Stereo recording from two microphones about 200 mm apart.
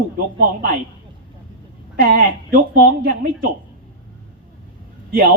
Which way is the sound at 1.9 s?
45° right (ahead or behind).